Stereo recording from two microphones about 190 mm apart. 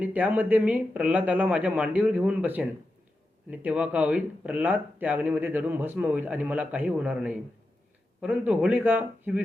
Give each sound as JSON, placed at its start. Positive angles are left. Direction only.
{"t": 0.0, "sound": "speech", "side_deg": -10}